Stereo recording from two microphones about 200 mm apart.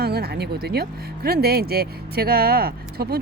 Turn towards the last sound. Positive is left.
turn(degrees=-50)  # may be behind; listen again after turning